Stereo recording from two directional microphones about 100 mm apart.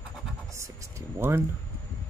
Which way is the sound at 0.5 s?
30° right (ahead or behind).